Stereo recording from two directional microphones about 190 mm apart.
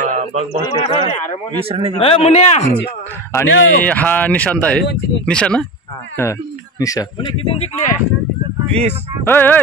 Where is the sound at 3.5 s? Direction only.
75° left (ahead or behind).